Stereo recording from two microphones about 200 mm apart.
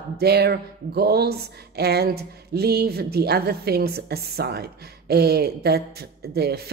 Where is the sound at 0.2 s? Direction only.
55° right (ahead or behind).